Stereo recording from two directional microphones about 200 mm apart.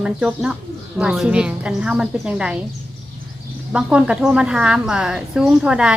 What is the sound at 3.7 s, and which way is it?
A woman's voice, 5° right (ahead or behind).